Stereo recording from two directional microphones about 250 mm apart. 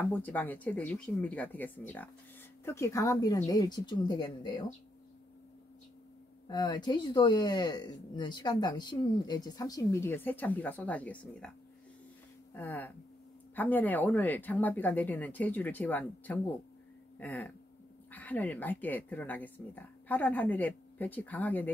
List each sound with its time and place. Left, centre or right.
0.0 s speech: centre
6.4 s speech: centre
12.5 s speech: centre